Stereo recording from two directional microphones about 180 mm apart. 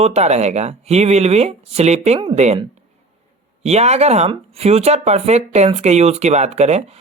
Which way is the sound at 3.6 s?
35° right (ahead or behind).